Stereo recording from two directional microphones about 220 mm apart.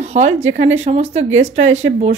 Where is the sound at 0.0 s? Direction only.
30° right (ahead or behind).